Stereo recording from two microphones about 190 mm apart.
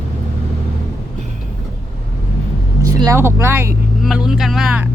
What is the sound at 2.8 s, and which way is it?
Speech, 15° right (ahead or behind).